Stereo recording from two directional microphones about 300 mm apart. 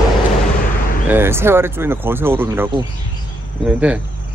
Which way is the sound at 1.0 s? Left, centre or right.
Centre.